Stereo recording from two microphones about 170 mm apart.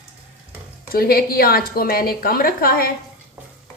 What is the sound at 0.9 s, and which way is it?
A woman's voice, 60° left (ahead or behind).